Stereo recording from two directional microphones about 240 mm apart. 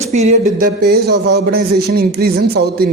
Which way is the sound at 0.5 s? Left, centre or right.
Right.